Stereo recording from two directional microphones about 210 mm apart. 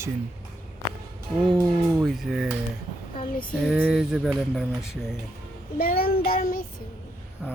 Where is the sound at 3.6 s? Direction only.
Centre (ahead or behind).